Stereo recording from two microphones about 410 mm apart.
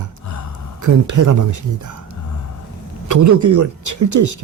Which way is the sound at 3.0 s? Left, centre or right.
Right.